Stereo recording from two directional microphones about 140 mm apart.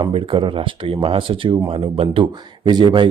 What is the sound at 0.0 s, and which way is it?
Speech, 40° right (ahead or behind).